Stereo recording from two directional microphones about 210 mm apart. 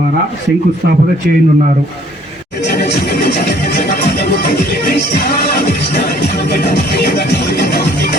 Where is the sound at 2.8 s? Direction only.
50° left (ahead or behind).